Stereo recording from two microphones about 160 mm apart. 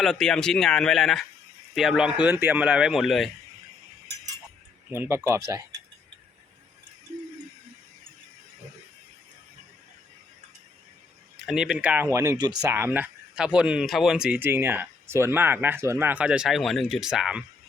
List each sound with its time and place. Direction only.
0.0 s speech: centre (ahead or behind)
4.9 s speech: 15° right (ahead or behind)
11.4 s speech: 5° right (ahead or behind)
12.1 s speech: 20° right (ahead or behind); by 17.4 s 5° right (ahead or behind)